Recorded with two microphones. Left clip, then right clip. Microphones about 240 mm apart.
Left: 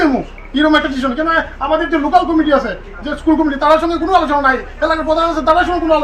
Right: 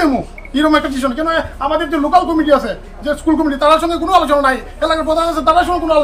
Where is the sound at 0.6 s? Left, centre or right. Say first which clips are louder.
Left 1 dB; right.